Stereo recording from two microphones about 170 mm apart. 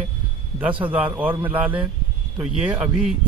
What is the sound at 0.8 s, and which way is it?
Speech, 10° right (ahead or behind).